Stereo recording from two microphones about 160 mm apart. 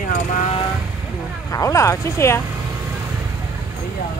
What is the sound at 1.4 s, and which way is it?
Speech, 20° left (ahead or behind).